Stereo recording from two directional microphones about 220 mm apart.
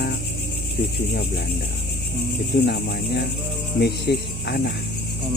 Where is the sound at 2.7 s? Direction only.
50° left (ahead or behind).